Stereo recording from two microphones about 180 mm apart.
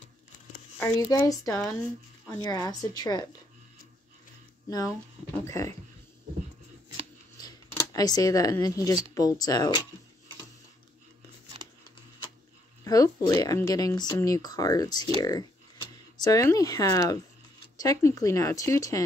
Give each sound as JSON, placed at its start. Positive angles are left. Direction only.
{"t": 0.8, "sound": "speech", "side_deg": 20}
{"t": 4.6, "sound": "speech", "side_deg": 20}
{"t": 7.4, "sound": "speech", "side_deg": 20}
{"t": 12.8, "sound": "speech", "side_deg": 20}